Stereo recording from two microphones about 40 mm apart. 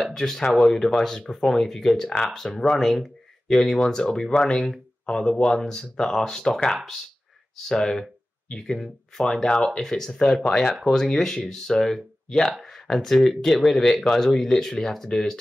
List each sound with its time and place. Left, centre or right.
0.0 s speech: centre
8.7 s speech: centre
9.2 s speech: centre